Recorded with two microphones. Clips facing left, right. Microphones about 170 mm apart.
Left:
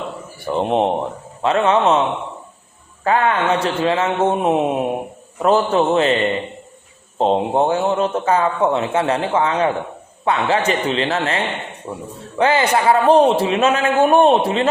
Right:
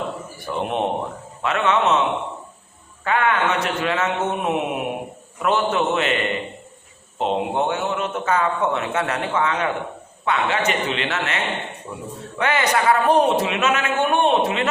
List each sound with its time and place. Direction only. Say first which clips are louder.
0.4 s a man's voice: left 6 dB; 30° left (ahead or behind)
3.0 s a man's voice: left 3 dB; 35° left (ahead or behind)
7.2 s a man's voice: left 5 dB; 35° left (ahead or behind)